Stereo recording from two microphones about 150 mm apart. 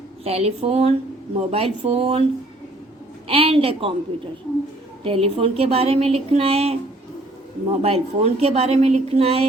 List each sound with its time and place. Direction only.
0.3 s a woman's voice: 40° right (ahead or behind)
3.2 s speech: 40° right (ahead or behind)
5.0 s speech: 40° right (ahead or behind)
7.8 s a woman's voice: 40° right (ahead or behind)